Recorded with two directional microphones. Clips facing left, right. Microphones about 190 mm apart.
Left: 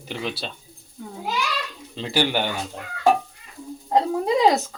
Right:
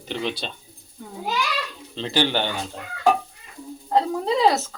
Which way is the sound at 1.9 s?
10° left (ahead or behind).